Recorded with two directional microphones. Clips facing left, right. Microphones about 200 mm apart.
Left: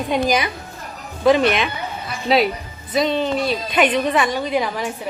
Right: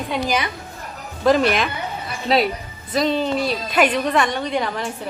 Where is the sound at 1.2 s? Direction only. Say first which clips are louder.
Left 1 dB; centre (ahead or behind).